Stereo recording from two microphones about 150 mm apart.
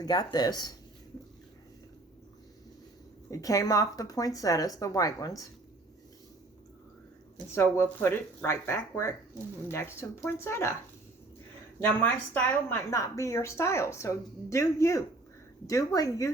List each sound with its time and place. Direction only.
0.0 s speech: 25° left (ahead or behind)
3.2 s speech: 20° left (ahead or behind)
7.5 s speech: 15° left (ahead or behind)
11.9 s speech: 15° left (ahead or behind)